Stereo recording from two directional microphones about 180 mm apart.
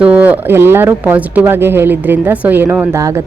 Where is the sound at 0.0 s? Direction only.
10° right (ahead or behind).